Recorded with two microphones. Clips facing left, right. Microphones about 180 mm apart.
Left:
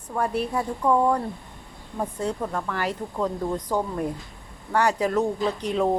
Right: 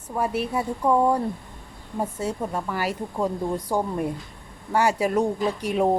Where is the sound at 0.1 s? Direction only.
5° right (ahead or behind).